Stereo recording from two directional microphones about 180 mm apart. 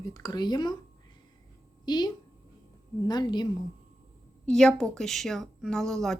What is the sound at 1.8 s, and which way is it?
A woman's voice, 25° left (ahead or behind).